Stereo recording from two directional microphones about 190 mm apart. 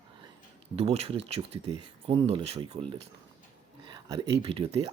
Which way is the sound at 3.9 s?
20° right (ahead or behind).